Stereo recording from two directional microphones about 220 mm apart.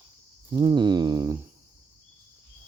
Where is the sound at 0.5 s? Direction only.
20° right (ahead or behind).